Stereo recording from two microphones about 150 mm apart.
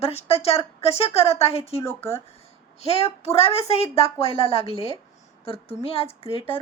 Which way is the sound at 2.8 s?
45° left (ahead or behind).